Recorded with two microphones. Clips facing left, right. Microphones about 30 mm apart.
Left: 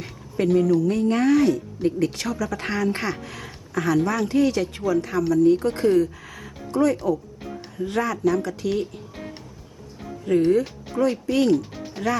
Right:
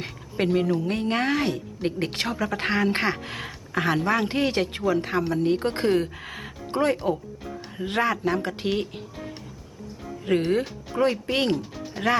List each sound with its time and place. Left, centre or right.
0.0 s a sound: right
0.8 s speech: right
10.3 s speech: right
10.9 s speech: right
11.3 s speech: right
12.0 s speech: centre